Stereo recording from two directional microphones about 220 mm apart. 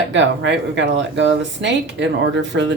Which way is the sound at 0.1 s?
55° right (ahead or behind).